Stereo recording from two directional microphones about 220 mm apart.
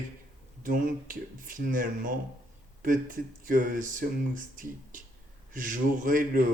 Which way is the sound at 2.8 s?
40° right (ahead or behind).